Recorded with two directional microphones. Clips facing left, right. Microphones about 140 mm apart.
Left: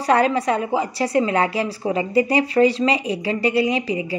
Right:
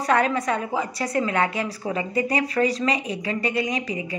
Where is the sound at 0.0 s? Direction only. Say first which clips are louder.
Left 4 dB; 30° left (ahead or behind).